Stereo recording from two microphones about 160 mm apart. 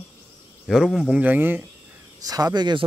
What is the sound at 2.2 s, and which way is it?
Speech, 25° right (ahead or behind).